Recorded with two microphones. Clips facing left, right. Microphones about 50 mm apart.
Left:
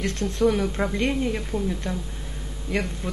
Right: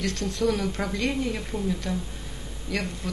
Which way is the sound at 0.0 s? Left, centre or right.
Left.